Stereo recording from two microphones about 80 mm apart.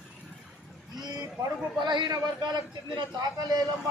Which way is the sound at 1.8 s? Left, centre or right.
Right.